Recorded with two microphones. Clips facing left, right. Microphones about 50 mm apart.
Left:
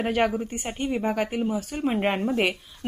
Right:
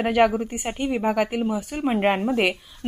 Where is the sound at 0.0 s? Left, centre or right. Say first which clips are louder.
Right 4 dB; centre.